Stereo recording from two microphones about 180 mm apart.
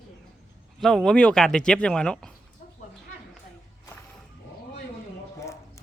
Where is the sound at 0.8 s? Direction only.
5° left (ahead or behind).